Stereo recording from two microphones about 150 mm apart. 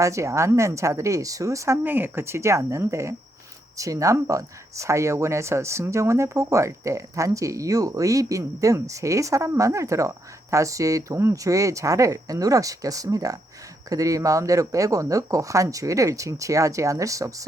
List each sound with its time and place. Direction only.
0.0 s speech: 20° right (ahead or behind)